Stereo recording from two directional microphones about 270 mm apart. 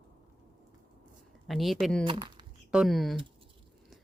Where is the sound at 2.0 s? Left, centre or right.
Centre.